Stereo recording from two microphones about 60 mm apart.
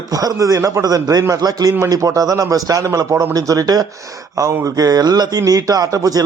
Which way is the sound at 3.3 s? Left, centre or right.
Right.